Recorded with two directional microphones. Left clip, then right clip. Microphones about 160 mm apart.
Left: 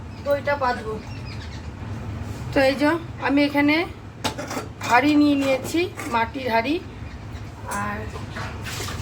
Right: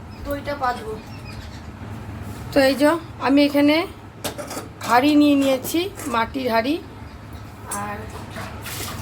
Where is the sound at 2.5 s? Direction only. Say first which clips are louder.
Right 3 dB; 90° right.